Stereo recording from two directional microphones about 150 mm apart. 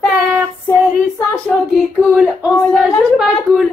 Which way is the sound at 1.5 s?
Centre (ahead or behind).